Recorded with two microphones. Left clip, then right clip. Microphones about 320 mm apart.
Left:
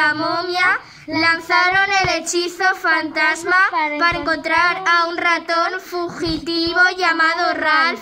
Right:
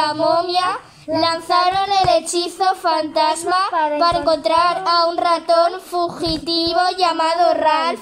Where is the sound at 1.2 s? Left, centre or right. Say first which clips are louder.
Left 1 dB; centre.